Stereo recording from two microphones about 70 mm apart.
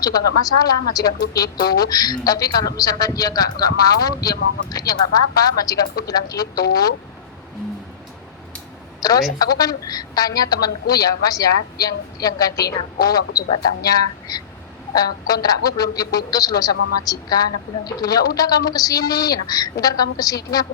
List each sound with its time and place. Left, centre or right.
0.6 s a woman's voice: left
9.0 s telephone: left
9.4 s a woman's voice: left